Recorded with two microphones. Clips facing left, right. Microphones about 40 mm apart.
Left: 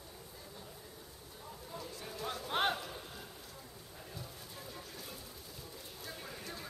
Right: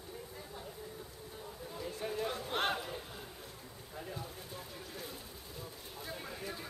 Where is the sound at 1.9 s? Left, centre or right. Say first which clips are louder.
Right 8 dB; right.